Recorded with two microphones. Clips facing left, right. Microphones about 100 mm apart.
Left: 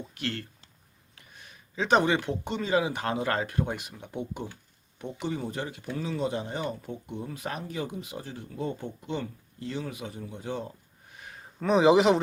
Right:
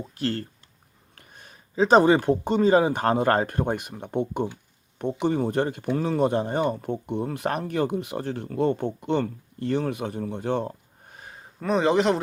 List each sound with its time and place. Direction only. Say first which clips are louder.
0.0 s speech: right 6 dB; 35° right (ahead or behind); by 11.1 s 65° right (ahead or behind)
11.1 s a sound: right 2 dB; 35° right (ahead or behind)
11.6 s speech: left 1 dB; centre (ahead or behind)